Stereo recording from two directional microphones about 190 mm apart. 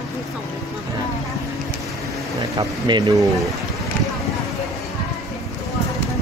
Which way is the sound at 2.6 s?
20° right (ahead or behind).